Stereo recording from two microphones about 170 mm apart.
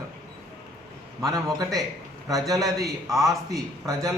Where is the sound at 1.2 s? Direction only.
20° right (ahead or behind).